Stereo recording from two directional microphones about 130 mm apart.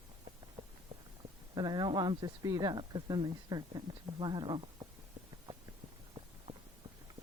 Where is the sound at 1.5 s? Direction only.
35° right (ahead or behind).